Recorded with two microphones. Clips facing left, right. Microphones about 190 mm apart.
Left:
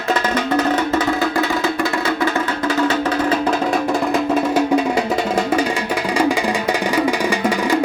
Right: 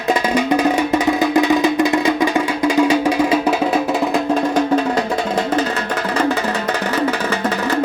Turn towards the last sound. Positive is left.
turn(degrees=10)  # may be behind; listen again after turning